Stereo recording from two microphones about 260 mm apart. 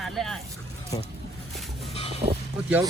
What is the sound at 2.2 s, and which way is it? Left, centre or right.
Vehicle, right.